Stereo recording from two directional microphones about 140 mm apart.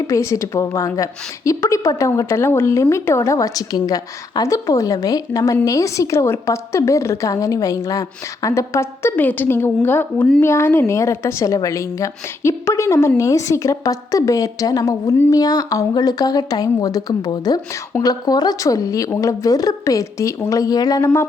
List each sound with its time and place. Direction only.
0.1 s a woman's voice: 20° left (ahead or behind)